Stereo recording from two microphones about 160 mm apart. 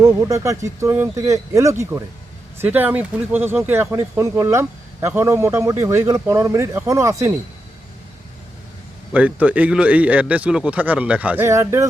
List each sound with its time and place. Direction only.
0.0 s speech: 20° right (ahead or behind)
9.1 s speech: 10° right (ahead or behind)